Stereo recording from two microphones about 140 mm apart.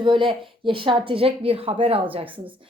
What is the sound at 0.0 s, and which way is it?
A woman's voice, 35° right (ahead or behind).